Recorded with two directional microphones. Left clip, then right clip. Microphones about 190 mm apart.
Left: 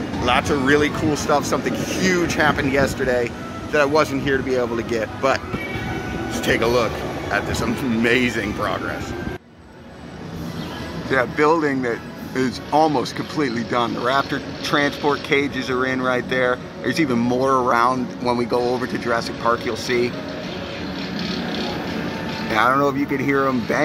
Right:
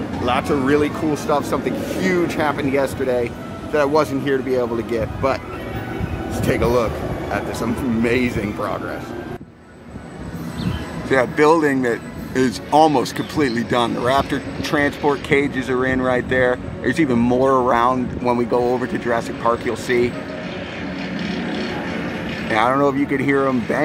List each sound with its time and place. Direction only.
0.2 s speech: 15° right (ahead or behind)
11.1 s speech: 15° right (ahead or behind)
21.2 s vehicle: centre (ahead or behind)
22.5 s speech: 10° right (ahead or behind)